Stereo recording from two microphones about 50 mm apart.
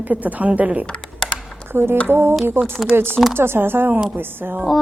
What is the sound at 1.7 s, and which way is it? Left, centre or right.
A woman's voice, right.